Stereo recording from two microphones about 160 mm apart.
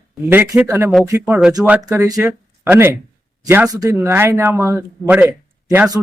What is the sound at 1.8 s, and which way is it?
A man's voice, 20° right (ahead or behind).